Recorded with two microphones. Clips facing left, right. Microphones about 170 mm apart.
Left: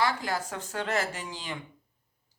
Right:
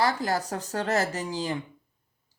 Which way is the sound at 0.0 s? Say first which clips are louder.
Right 3 dB; 40° right (ahead or behind).